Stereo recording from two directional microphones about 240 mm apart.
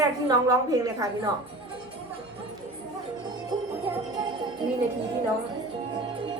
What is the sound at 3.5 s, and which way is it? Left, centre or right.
Music, centre.